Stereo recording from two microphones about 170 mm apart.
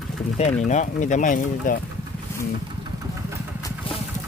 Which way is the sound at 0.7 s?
45° left (ahead or behind).